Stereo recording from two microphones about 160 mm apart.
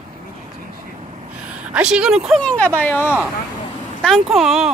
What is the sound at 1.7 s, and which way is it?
Speech, 5° right (ahead or behind).